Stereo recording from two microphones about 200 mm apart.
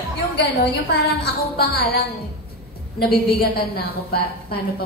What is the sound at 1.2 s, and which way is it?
A woman's voice, 50° left (ahead or behind).